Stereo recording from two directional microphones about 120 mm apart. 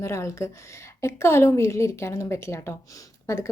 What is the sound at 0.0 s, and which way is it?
A woman's voice, 25° left (ahead or behind).